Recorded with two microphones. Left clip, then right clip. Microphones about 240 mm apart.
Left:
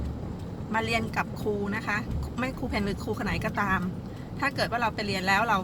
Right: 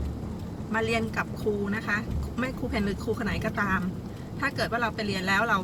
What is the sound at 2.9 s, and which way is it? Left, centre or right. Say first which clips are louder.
Speech: right 1 dB; left.